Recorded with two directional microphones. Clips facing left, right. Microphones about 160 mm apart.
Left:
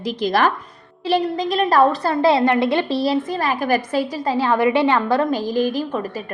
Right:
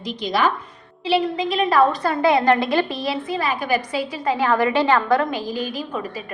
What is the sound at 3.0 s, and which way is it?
A woman's voice, 40° left (ahead or behind).